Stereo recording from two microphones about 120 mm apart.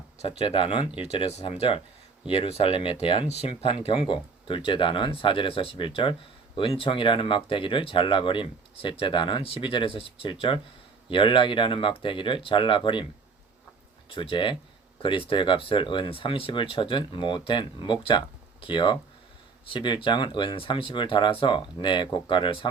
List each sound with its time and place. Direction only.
0.2 s speech: 55° left (ahead or behind)
0.9 s speech: 55° left (ahead or behind)
1.5 s speech: 50° left (ahead or behind)
14.1 s speech: 45° left (ahead or behind)
14.9 s a sound: 45° left (ahead or behind)
15.3 s speech: 45° left (ahead or behind)